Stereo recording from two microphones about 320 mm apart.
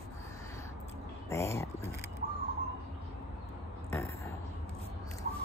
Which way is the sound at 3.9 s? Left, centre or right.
Centre.